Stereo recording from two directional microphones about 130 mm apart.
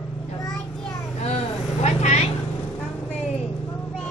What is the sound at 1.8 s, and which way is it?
Speech, 60° left (ahead or behind).